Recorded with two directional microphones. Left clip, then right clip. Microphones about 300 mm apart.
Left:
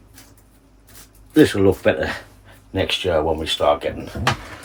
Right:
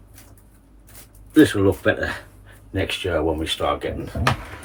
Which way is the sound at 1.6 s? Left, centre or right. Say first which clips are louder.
Left 3 dB; centre.